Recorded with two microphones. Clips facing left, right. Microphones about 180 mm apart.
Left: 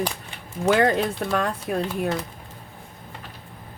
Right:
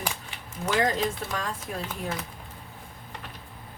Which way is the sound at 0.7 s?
65° left (ahead or behind).